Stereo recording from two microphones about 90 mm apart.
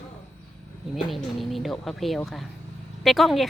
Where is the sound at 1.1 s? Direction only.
Centre (ahead or behind).